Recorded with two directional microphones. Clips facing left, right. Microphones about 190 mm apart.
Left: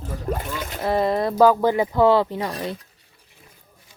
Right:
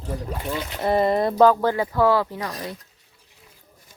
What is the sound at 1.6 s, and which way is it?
Speech, 20° left (ahead or behind).